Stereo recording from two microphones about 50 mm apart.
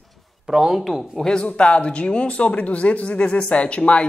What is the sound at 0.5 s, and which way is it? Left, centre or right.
Speech, centre.